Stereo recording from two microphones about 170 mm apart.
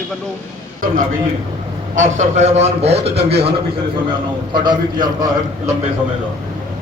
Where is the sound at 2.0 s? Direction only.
45° right (ahead or behind).